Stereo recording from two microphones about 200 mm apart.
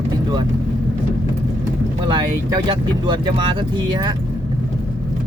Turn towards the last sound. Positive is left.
turn(degrees=-20)  # may be behind; listen again after turning